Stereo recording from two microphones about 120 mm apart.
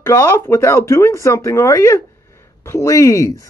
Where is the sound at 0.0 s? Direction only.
25° left (ahead or behind).